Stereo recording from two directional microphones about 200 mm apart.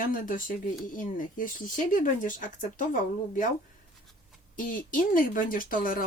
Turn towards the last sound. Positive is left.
turn(degrees=45)  # may be behind; listen again after turning